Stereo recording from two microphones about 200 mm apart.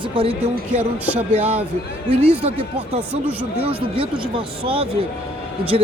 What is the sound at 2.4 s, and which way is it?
Speech, 35° right (ahead or behind).